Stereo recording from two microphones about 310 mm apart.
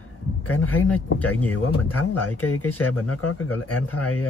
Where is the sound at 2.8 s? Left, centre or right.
Left.